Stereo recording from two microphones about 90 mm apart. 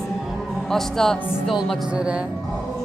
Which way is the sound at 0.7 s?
5° left (ahead or behind).